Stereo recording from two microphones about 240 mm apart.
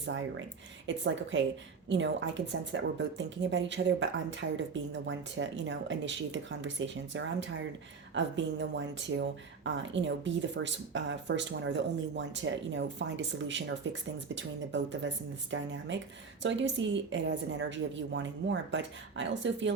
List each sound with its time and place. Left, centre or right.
0.0 s speech: right